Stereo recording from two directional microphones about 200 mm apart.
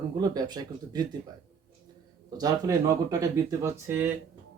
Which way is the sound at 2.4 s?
15° right (ahead or behind).